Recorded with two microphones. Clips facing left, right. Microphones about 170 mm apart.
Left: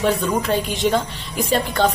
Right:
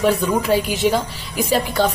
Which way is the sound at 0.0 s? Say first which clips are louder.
Right 2 dB; 5° right (ahead or behind).